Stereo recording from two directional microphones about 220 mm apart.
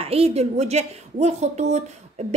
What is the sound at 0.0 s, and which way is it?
A woman's voice, 25° right (ahead or behind).